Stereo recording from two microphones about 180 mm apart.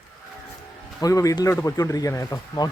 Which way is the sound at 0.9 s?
20° left (ahead or behind).